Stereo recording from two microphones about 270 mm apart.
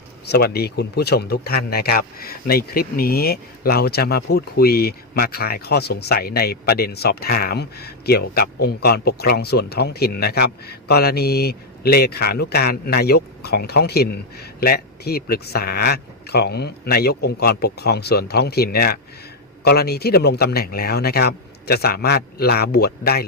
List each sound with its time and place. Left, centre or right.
0.3 s speech: left